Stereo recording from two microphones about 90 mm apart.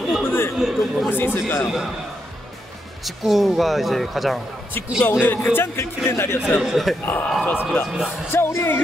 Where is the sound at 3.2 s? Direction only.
Centre (ahead or behind).